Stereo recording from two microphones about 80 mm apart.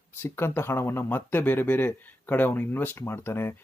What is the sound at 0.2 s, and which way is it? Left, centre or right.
Speech, left.